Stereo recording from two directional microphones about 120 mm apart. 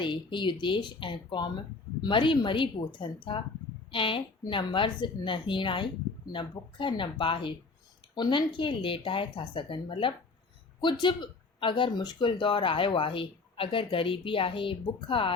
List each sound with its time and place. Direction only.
0.0 s speech: 40° left (ahead or behind)